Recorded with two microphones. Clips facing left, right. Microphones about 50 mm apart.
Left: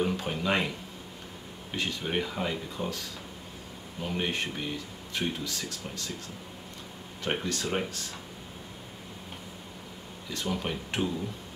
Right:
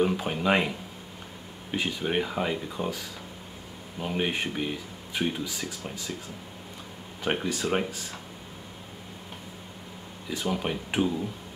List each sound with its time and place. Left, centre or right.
0.0 s speech: centre
4.0 s speech: centre
7.2 s speech: centre
10.3 s speech: centre